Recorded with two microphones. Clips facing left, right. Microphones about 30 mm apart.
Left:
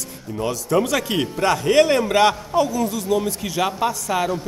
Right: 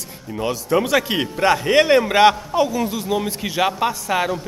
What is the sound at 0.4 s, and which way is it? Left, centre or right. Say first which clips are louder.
A man's voice: right 1 dB; centre.